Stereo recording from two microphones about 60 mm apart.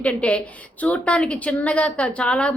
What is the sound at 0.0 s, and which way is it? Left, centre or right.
A woman's voice, centre.